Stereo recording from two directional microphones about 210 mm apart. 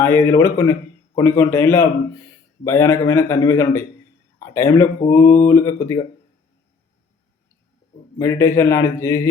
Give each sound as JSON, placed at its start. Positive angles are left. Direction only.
{"t": 0.0, "sound": "a man's voice", "side_deg": 15}
{"t": 8.2, "sound": "a man's voice", "side_deg": 15}